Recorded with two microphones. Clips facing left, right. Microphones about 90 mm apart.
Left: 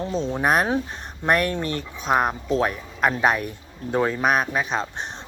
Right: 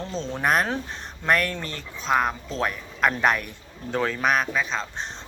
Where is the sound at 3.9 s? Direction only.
20° left (ahead or behind).